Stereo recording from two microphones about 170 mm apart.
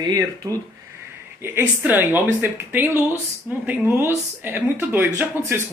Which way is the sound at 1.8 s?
10° right (ahead or behind).